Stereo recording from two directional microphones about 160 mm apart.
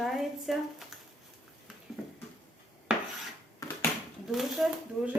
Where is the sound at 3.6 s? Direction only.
20° left (ahead or behind).